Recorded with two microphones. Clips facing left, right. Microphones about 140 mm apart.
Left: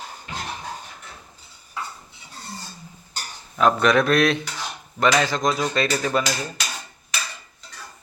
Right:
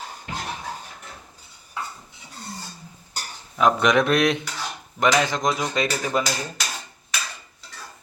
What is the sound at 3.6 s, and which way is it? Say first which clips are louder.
Speech: left 1 dB; 15° right (ahead or behind).